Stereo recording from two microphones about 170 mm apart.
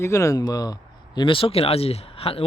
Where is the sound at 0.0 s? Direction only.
15° left (ahead or behind).